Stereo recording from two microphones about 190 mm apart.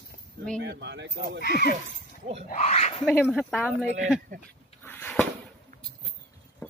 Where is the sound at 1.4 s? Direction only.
55° left (ahead or behind).